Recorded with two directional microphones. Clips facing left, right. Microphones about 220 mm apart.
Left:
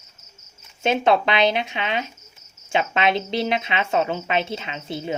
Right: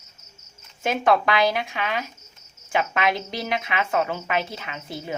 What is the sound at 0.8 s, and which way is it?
A woman's voice, 25° left (ahead or behind).